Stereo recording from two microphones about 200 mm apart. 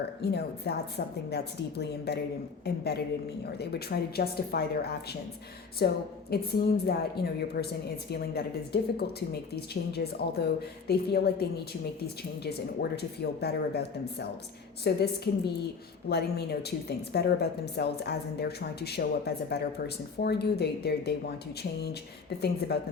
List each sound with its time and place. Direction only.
0.2 s a woman's voice: 55° left (ahead or behind)